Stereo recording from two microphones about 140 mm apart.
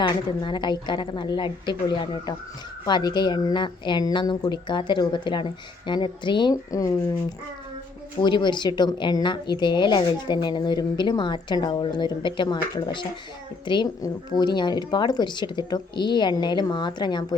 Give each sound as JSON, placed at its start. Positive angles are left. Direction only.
{"t": 0.0, "sound": "a woman's voice", "side_deg": 35}
{"t": 8.2, "sound": "a woman's voice", "side_deg": 35}